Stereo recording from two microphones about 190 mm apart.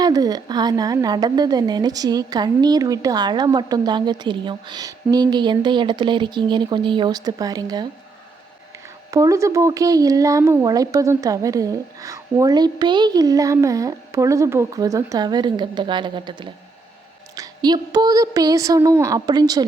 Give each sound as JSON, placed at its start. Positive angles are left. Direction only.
{"t": 0.0, "sound": "a woman's voice", "side_deg": -20}
{"t": 9.0, "sound": "a woman's voice", "side_deg": -15}